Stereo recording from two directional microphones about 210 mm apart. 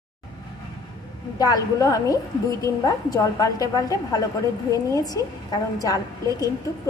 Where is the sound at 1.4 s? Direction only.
15° left (ahead or behind).